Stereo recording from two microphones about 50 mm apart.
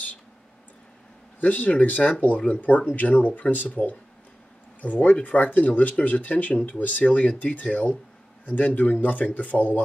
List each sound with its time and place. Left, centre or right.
1.4 s speech: left
4.8 s speech: left